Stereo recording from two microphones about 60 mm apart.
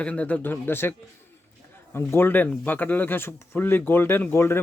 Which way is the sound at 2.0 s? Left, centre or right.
Left.